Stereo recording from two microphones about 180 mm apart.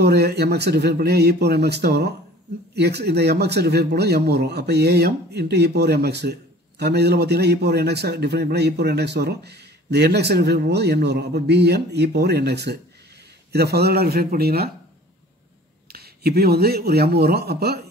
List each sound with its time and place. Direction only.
0.0 s a man's voice: 65° right (ahead or behind)
15.9 s a man's voice: 60° right (ahead or behind)